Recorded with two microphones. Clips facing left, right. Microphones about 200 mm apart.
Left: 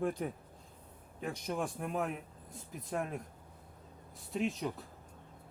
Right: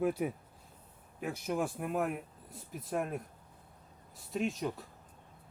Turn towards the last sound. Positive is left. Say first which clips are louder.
# right 1 dB
turn(degrees=0)  # may be behind; listen again after turning